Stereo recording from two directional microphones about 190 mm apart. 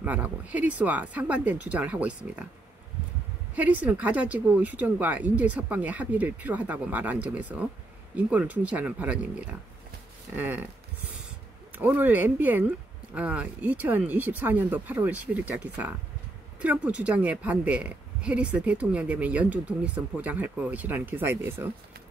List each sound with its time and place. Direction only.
0.0 s a woman's voice: 10° right (ahead or behind)
3.5 s a woman's voice: 10° right (ahead or behind)